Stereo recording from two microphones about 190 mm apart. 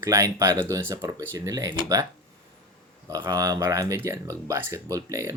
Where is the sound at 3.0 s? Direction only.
15° right (ahead or behind).